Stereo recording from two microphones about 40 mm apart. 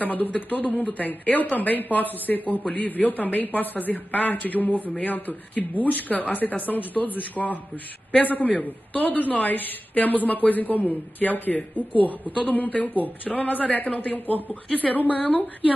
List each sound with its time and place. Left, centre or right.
0.0 s a woman's voice: left
7.4 s a woman's voice: left
14.1 s a woman's voice: left